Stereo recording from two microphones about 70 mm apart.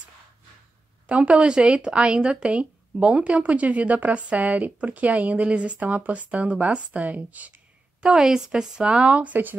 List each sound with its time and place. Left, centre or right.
1.0 s speech: centre
8.0 s speech: centre; by 9.6 s right